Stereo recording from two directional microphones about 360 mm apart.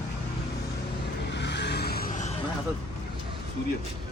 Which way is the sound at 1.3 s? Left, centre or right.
Left.